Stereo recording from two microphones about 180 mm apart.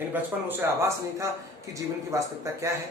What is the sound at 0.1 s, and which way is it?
Speech, 15° right (ahead or behind).